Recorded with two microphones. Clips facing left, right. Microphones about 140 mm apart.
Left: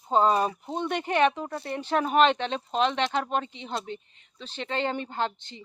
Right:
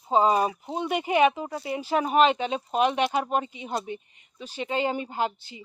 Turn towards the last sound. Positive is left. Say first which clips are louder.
# right 2 dB
turn(degrees=-10)  # may be behind; listen again after turning